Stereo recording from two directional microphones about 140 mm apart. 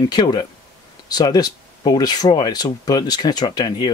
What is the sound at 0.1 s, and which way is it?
Speech, 30° left (ahead or behind).